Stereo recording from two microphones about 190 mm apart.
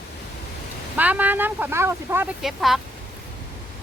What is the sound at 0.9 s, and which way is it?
Speech, 10° right (ahead or behind).